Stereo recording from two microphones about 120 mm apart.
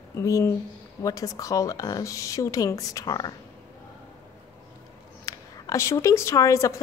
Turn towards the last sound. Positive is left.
turn(degrees=25)  # may be behind; listen again after turning